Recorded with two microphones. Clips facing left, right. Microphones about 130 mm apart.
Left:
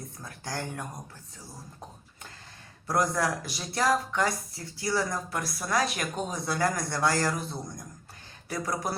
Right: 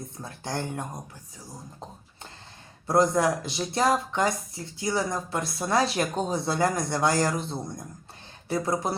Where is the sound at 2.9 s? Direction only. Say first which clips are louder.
Right 5 dB; 25° right (ahead or behind).